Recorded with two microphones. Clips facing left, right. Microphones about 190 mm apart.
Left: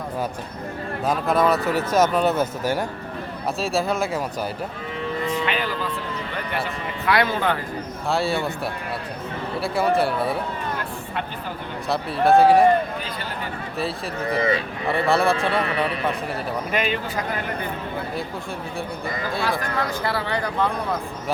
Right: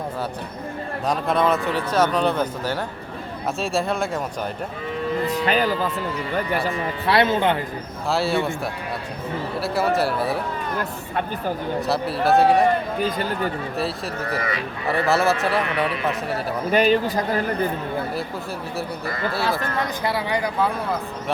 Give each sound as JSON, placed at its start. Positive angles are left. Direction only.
{"t": 1.0, "sound": "speech", "side_deg": 0}
{"t": 5.2, "sound": "a sound", "side_deg": -40}
{"t": 7.0, "sound": "speech", "side_deg": -25}
{"t": 8.1, "sound": "speech", "side_deg": 0}
{"t": 9.6, "sound": "speech", "side_deg": 0}
{"t": 11.9, "sound": "speech", "side_deg": 0}
{"t": 13.0, "sound": "speech", "side_deg": -45}
{"t": 14.3, "sound": "speech", "side_deg": 25}
{"t": 14.8, "sound": "speech", "side_deg": 0}
{"t": 16.7, "sound": "speech", "side_deg": -35}
{"t": 19.5, "sound": "speech", "side_deg": -20}